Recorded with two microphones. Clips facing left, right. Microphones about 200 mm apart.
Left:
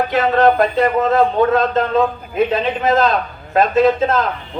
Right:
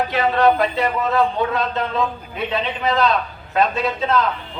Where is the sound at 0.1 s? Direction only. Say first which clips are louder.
Left 3 dB; 50° left (ahead or behind).